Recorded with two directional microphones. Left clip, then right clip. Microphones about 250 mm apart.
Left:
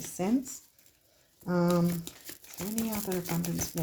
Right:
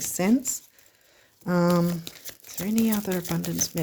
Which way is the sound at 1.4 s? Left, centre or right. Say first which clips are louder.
Right 5 dB; right.